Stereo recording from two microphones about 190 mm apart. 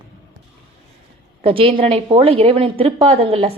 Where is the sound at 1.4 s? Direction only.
30° right (ahead or behind).